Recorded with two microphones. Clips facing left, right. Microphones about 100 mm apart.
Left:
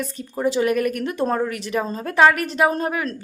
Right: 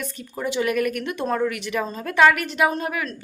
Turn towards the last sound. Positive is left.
turn(degrees=35)  # may be behind; listen again after turning